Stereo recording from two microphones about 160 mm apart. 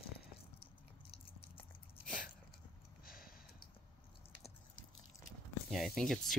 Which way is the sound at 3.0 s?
65° left (ahead or behind).